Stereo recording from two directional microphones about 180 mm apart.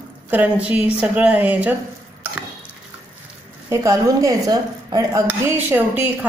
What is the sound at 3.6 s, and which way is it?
A woman's voice, 15° right (ahead or behind).